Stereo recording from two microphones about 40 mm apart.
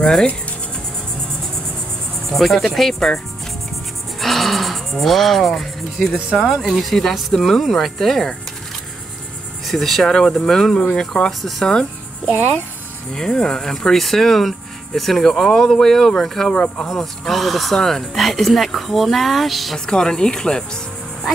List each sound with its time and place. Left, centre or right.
2.3 s speech: centre
4.2 s music: centre
6.3 s speech: centre
9.7 s speech: centre
10.0 s speech: centre
13.1 s speech: centre
16.5 s speech: left
16.8 s speech: centre
19.9 s speech: centre